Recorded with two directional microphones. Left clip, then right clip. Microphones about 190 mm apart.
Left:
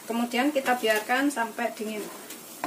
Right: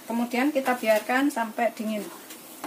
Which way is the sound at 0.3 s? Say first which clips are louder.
Even; 30° right (ahead or behind).